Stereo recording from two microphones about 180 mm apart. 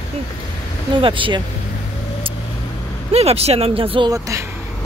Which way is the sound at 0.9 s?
30° right (ahead or behind).